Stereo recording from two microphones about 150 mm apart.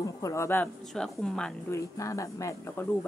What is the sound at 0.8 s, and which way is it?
Speech, 5° left (ahead or behind).